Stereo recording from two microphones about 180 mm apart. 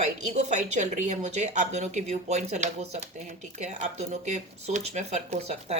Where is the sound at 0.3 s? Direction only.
40° right (ahead or behind).